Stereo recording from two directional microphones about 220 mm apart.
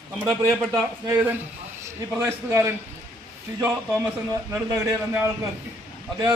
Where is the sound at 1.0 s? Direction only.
10° right (ahead or behind).